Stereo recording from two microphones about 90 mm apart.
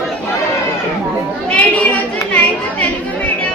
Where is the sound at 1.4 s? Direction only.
15° left (ahead or behind).